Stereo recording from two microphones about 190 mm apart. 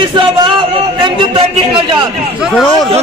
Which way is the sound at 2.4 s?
Centre (ahead or behind).